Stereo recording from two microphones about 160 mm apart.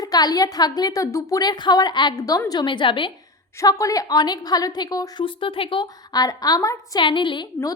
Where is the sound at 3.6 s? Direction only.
20° left (ahead or behind).